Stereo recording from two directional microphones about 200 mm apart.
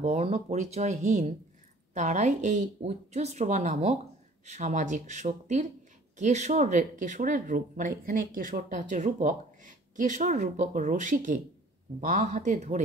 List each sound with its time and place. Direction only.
0.0 s speech: 30° right (ahead or behind)